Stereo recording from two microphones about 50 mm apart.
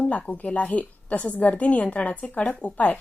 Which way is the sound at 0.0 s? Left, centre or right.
Left.